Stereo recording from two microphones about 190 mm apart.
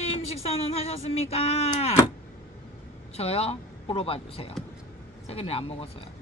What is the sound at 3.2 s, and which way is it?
A woman's voice, 30° left (ahead or behind).